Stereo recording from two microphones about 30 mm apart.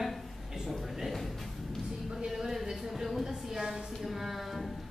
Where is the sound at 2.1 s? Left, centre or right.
Centre.